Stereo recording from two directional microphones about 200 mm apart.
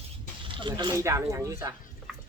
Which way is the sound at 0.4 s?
25° right (ahead or behind).